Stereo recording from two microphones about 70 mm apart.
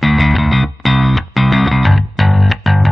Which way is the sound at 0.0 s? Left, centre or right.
Centre.